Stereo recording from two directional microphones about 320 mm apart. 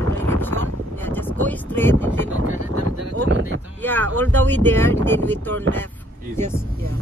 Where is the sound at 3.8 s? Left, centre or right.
Centre.